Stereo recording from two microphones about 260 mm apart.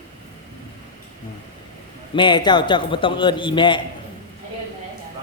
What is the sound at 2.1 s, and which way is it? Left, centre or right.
A man's voice, centre.